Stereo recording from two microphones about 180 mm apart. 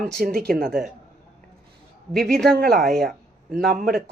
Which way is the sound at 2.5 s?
55° right (ahead or behind).